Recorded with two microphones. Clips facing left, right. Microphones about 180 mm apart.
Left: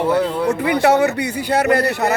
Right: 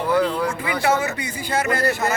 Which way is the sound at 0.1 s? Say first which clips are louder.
Right 1 dB; 25° left (ahead or behind).